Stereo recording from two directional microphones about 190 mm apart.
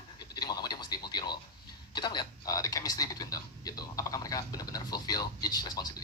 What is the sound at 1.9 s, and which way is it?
Speech, 25° left (ahead or behind).